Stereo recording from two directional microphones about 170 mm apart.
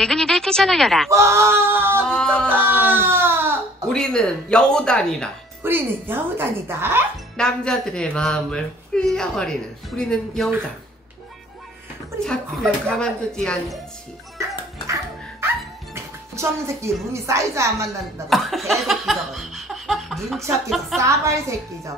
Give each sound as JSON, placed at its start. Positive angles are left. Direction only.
{"t": 0.0, "sound": "speech", "side_deg": 5}
{"t": 1.1, "sound": "speech", "side_deg": -15}
{"t": 2.0, "sound": "speech", "side_deg": 5}
{"t": 2.5, "sound": "speech", "side_deg": -10}
{"t": 3.9, "sound": "speech", "side_deg": 5}
{"t": 5.6, "sound": "speech", "side_deg": -10}
{"t": 7.3, "sound": "speech", "side_deg": 5}
{"t": 12.2, "sound": "speech", "side_deg": 5}
{"t": 15.4, "sound": "music", "side_deg": -15}
{"t": 18.3, "sound": "laughter", "side_deg": 0}
{"t": 20.3, "sound": "speech", "side_deg": -15}